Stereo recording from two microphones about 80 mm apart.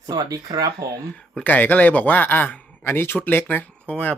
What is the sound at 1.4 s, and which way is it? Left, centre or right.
Speech, left.